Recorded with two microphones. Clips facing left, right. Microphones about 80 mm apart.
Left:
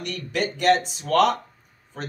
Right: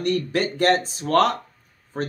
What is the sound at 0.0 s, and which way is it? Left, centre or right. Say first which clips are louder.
Speech: right 5 dB; right.